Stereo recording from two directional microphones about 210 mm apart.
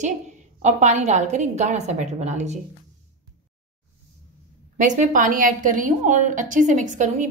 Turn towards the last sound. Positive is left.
turn(degrees=-35)  # may be behind; listen again after turning